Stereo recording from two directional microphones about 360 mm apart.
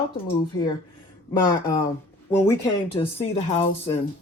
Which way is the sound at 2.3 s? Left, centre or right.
Centre.